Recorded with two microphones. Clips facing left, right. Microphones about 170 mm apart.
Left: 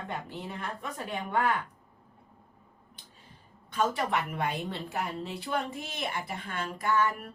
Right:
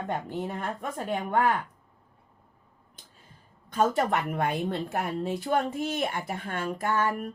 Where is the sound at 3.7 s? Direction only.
45° right (ahead or behind).